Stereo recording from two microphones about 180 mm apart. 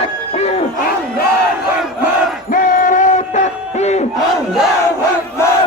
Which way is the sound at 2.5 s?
50° left (ahead or behind).